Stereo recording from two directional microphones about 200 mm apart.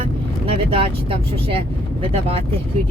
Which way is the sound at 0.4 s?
25° right (ahead or behind).